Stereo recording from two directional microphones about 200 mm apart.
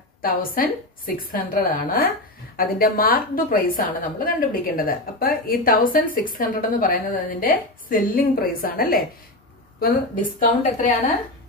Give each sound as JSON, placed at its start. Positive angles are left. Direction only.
{"t": 0.2, "sound": "a woman's voice", "side_deg": 45}